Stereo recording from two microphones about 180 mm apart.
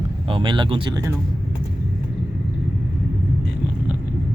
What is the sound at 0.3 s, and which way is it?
Speech, 30° right (ahead or behind).